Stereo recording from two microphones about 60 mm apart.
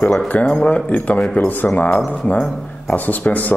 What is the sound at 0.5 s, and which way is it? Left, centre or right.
Speech, centre.